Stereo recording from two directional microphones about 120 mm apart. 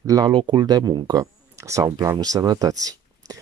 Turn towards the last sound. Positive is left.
turn(degrees=-30)  # may be behind; listen again after turning